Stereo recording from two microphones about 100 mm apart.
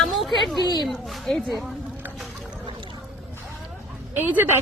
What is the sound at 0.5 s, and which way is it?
Speech, 45° left (ahead or behind).